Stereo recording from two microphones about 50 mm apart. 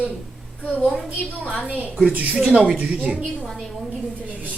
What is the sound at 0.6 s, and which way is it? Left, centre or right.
Speech, left.